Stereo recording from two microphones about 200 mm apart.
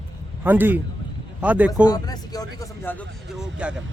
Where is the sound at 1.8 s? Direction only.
20° left (ahead or behind).